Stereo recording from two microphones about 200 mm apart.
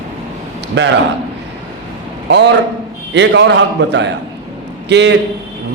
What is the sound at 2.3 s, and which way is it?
A man's voice, 60° right (ahead or behind).